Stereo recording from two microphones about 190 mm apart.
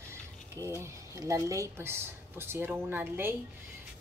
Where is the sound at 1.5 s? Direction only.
15° right (ahead or behind).